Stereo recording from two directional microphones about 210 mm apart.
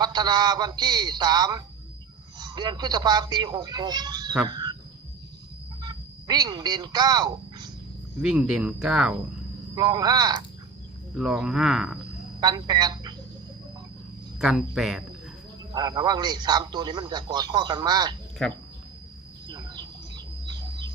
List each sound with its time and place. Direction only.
0.0 s a man's voice: 20° right (ahead or behind)
4.4 s a sound: 20° right (ahead or behind)
5.8 s a sound: 20° right (ahead or behind)
8.2 s speech: 5° right (ahead or behind)
9.7 s a man's voice: 20° right (ahead or behind)
11.1 s speech: 5° right (ahead or behind)
12.4 s a woman's voice: 20° right (ahead or behind)
14.3 s speech: centre (ahead or behind)
15.7 s a man's voice: 20° right (ahead or behind)
19.5 s bird: 20° right (ahead or behind)